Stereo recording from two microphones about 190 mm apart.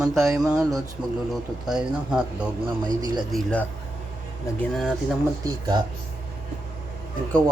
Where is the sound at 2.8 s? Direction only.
20° right (ahead or behind).